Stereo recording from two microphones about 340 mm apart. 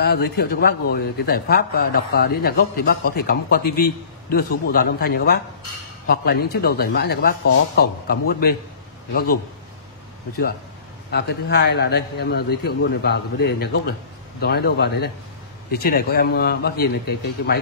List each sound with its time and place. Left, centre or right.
0.0 s a man's voice: left
11.1 s a man's voice: left